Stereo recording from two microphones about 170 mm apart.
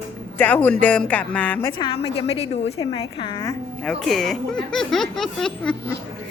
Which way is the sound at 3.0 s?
25° left (ahead or behind).